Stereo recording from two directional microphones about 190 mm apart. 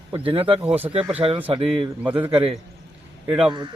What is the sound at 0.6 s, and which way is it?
Speech, 10° right (ahead or behind).